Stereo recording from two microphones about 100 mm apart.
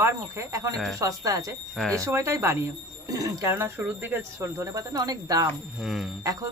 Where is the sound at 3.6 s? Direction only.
20° right (ahead or behind); by 5.4 s 40° right (ahead or behind).